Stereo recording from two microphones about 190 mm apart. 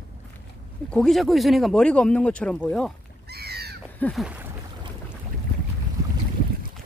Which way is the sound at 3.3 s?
55° right (ahead or behind).